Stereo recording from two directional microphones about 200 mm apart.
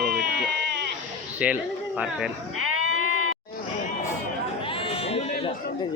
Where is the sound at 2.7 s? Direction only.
90° right.